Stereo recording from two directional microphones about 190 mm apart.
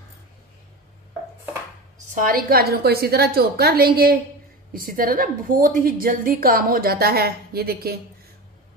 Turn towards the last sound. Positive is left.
turn(degrees=-55)  # may be behind; listen again after turning